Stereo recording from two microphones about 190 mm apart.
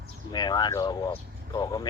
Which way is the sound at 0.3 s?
20° left (ahead or behind).